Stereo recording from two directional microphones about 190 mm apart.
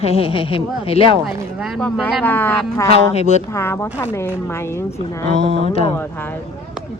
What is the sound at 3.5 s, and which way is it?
Speech, 15° left (ahead or behind).